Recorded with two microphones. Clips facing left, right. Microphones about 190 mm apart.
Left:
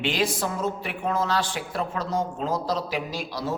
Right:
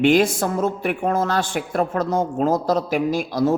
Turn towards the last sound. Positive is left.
turn(degrees=-50)  # may be behind; listen again after turning